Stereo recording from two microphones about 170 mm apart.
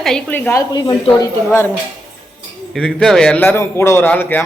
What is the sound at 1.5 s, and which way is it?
Speech, 15° left (ahead or behind).